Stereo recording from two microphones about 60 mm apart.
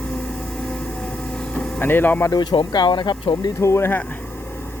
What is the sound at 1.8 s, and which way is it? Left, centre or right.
Speech, left.